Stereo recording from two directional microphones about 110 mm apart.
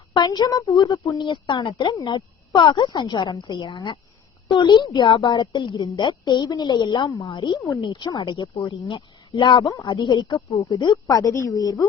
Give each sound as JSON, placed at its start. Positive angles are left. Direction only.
{"t": 0.1, "sound": "a woman's voice", "side_deg": 40}
{"t": 1.2, "sound": "a woman's voice", "side_deg": 45}
{"t": 7.6, "sound": "a woman's voice", "side_deg": 30}
{"t": 7.9, "sound": "a woman's voice", "side_deg": 45}
{"t": 10.9, "sound": "a woman's voice", "side_deg": 30}